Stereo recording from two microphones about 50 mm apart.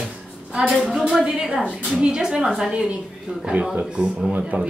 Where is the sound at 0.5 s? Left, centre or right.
Centre.